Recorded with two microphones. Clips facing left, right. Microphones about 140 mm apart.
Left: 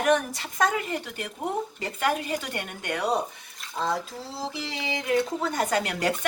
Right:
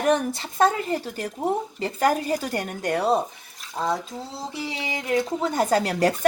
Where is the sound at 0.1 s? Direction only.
30° right (ahead or behind).